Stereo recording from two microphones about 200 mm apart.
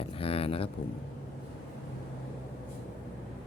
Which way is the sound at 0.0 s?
30° left (ahead or behind).